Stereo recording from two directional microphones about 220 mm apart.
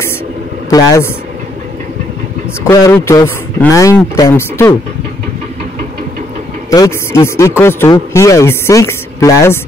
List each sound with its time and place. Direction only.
0.7 s speech: 15° left (ahead or behind)
2.7 s speech: 15° left (ahead or behind)
6.7 s speech: 15° left (ahead or behind)